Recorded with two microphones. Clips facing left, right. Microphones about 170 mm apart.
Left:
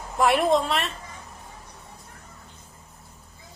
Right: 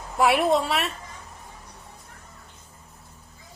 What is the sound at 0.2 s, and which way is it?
Speech, 5° right (ahead or behind).